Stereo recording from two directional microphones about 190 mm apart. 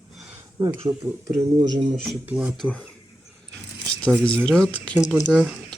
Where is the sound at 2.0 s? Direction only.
5° right (ahead or behind).